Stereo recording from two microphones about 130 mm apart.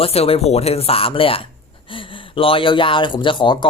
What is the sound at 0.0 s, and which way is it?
Speech, 50° left (ahead or behind).